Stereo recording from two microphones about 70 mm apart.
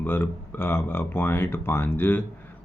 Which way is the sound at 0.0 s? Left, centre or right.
Left.